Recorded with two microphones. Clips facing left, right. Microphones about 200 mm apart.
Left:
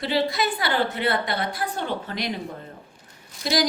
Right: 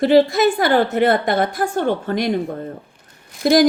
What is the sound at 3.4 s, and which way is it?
Speech, 55° right (ahead or behind).